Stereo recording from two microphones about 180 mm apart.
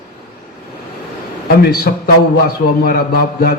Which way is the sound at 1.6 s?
55° left (ahead or behind).